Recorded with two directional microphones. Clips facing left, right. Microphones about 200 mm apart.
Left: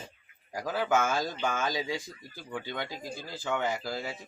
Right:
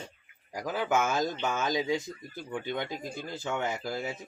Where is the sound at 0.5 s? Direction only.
15° right (ahead or behind).